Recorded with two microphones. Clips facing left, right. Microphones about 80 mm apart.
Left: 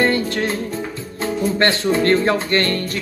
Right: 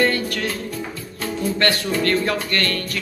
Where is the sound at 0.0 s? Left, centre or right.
Left.